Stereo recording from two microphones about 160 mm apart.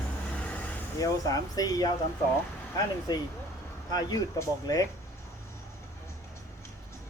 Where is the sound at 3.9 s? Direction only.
25° left (ahead or behind).